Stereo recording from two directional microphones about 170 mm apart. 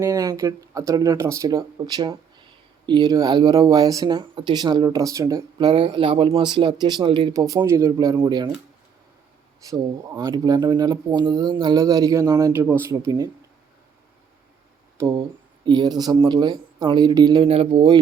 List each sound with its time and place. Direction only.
0.0 s speech: 20° right (ahead or behind)
9.6 s speech: 20° right (ahead or behind)
14.9 s speech: 15° right (ahead or behind)
17.4 s speech: 35° right (ahead or behind)